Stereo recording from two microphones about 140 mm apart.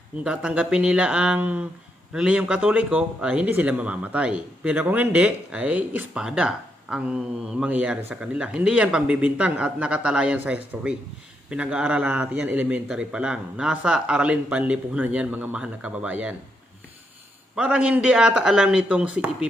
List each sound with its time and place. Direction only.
0.3 s speech: 5° right (ahead or behind)
17.5 s speech: 5° right (ahead or behind)